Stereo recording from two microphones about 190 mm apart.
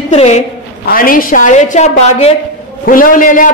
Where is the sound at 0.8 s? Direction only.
50° left (ahead or behind).